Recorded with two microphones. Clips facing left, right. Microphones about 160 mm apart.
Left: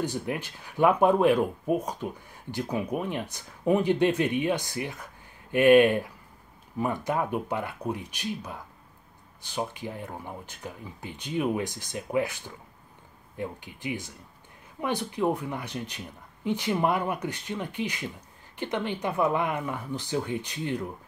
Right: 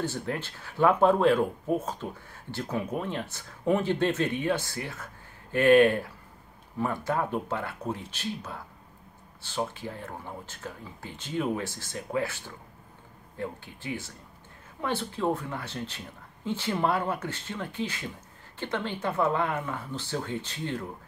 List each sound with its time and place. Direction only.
0.0 s speech: 15° left (ahead or behind)